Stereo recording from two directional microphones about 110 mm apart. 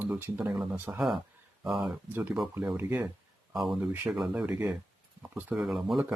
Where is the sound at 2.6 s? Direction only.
20° right (ahead or behind).